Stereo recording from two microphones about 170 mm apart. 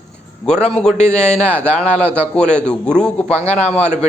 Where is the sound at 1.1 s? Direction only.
40° left (ahead or behind).